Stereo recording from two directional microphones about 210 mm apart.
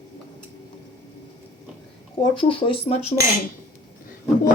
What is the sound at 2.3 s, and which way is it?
Speech, 25° left (ahead or behind).